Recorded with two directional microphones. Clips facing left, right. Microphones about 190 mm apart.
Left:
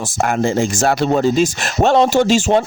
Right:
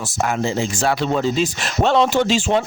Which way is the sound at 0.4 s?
50° left (ahead or behind).